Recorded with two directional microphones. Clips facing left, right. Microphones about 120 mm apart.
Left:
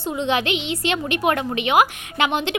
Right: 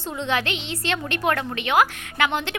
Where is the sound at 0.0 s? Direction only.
15° left (ahead or behind).